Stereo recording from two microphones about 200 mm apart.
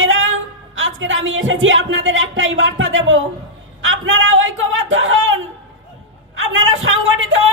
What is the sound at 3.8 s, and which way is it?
Speech, 75° right (ahead or behind).